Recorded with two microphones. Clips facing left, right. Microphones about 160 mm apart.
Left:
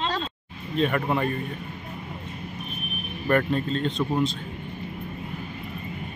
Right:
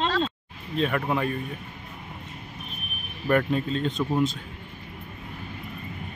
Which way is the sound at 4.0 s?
5° left (ahead or behind).